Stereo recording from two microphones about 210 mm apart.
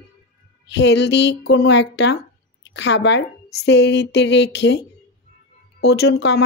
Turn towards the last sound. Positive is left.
turn(degrees=55)  # may be behind; listen again after turning